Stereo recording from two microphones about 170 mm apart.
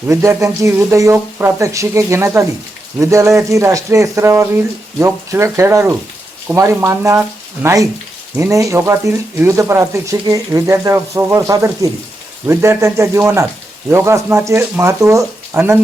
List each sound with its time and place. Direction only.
0.1 s speech: 15° right (ahead or behind)